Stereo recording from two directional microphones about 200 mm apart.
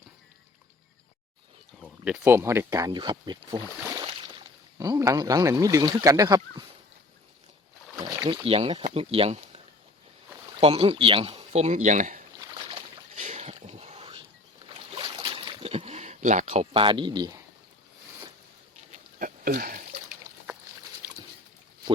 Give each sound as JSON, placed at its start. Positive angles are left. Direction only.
{"t": 1.8, "sound": "speech", "side_deg": -10}
{"t": 3.8, "sound": "boat", "side_deg": -15}
{"t": 4.0, "sound": "a sound", "side_deg": -25}
{"t": 5.9, "sound": "speech", "side_deg": -15}
{"t": 8.2, "sound": "speech", "side_deg": -20}
{"t": 10.6, "sound": "speech", "side_deg": -30}
{"t": 12.4, "sound": "boat", "side_deg": -25}
{"t": 13.1, "sound": "a sound", "side_deg": -35}
{"t": 18.9, "sound": "a sound", "side_deg": -45}
{"t": 21.0, "sound": "boat", "side_deg": -15}